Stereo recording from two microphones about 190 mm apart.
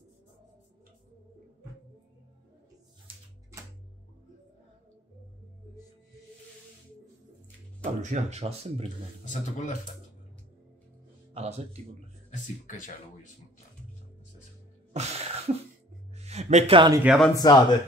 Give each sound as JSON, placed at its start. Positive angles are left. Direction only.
{"t": 7.8, "sound": "speech", "side_deg": -35}
{"t": 9.2, "sound": "speech", "side_deg": 40}
{"t": 11.3, "sound": "speech", "side_deg": -35}
{"t": 12.3, "sound": "speech", "side_deg": 45}
{"t": 14.9, "sound": "music", "side_deg": -35}
{"t": 16.2, "sound": "speech", "side_deg": -35}
{"t": 16.9, "sound": "speech", "side_deg": -5}
{"t": 17.4, "sound": "speech", "side_deg": 20}